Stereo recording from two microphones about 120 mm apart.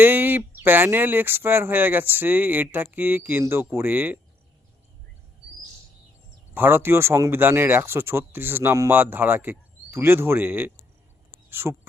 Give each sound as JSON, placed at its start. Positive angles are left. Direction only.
{"t": 0.0, "sound": "speech", "side_deg": -15}
{"t": 6.5, "sound": "speech", "side_deg": -20}